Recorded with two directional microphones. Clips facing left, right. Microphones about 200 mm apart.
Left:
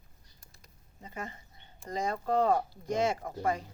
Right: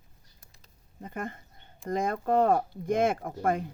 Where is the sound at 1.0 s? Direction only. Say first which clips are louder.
Right 5 dB; 55° right (ahead or behind).